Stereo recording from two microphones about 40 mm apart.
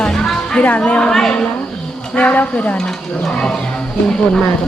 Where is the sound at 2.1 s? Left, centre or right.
Left.